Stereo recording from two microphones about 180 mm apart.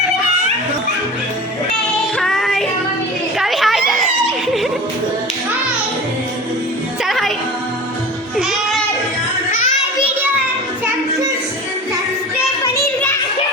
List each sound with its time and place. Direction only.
2.1 s music: centre (ahead or behind)
3.3 s a sound: centre (ahead or behind)
7.0 s music: centre (ahead or behind)
8.4 s music: 5° right (ahead or behind)
9.5 s children playing: 45° left (ahead or behind)